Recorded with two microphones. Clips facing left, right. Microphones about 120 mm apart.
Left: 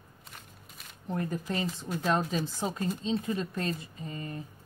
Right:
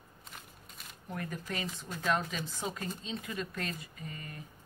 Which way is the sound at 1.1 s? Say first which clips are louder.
Left 6 dB; 30° left (ahead or behind).